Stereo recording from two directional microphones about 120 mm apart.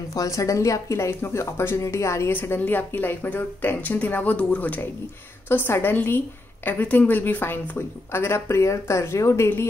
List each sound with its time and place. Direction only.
0.1 s a woman's voice: 30° left (ahead or behind)